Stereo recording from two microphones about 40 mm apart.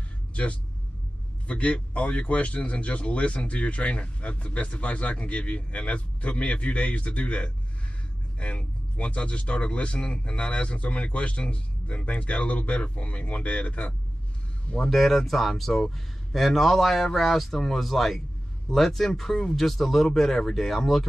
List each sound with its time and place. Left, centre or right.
0.3 s vehicle: left
1.5 s speech: left
14.9 s speech: centre